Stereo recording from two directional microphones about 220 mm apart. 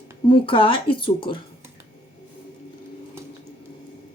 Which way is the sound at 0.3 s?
25° left (ahead or behind).